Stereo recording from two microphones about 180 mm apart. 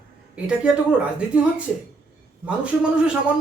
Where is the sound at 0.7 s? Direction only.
5° right (ahead or behind).